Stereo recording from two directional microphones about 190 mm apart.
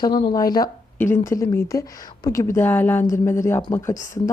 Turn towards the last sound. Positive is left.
turn(degrees=15)  # may be behind; listen again after turning